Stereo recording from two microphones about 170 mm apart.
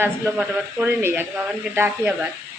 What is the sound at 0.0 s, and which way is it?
A man's voice, 5° right (ahead or behind).